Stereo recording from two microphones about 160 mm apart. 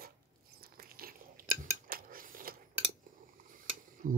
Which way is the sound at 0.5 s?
70° right (ahead or behind).